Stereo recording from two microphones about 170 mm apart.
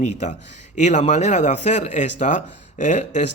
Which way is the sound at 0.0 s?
40° left (ahead or behind).